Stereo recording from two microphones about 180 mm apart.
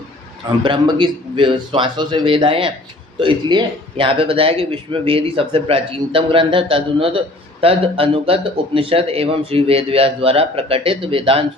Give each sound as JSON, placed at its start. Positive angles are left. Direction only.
{"t": 0.6, "sound": "a man's voice", "side_deg": -25}